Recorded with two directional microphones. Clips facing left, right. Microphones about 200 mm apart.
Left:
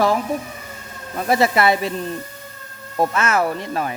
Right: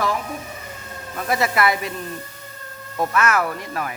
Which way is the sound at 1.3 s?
30° left (ahead or behind).